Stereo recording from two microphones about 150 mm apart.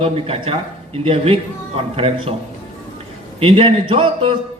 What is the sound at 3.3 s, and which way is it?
A man's voice, 40° right (ahead or behind).